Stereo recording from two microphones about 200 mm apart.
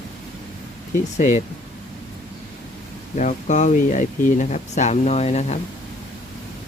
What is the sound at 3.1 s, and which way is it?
Speech, 35° left (ahead or behind).